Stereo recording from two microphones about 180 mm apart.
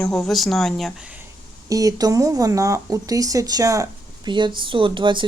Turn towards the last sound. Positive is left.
turn(degrees=-25)  # may be behind; listen again after turning